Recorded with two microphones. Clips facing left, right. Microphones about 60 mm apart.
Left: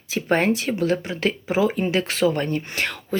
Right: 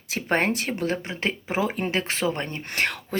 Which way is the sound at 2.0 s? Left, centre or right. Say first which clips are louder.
Left 5 dB; right.